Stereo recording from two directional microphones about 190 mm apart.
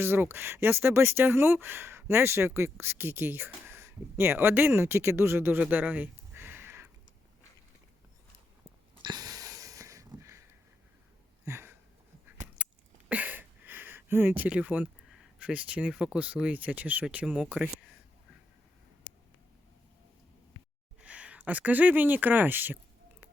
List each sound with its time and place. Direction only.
0.0 s speech: 10° right (ahead or behind)
9.0 s wheeze: 20° right (ahead or behind)
11.4 s a sound: 15° right (ahead or behind)
13.1 s a sound: 10° right (ahead or behind)
15.4 s speech: 5° right (ahead or behind)
21.0 s speech: 5° right (ahead or behind)